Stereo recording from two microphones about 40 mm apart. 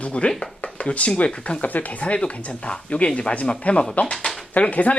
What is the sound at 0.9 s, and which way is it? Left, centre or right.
Speech, left.